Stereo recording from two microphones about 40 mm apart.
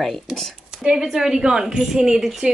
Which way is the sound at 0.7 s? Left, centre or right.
Centre.